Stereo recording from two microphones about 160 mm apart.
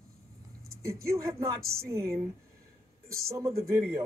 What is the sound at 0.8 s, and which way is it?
Speech, 20° right (ahead or behind).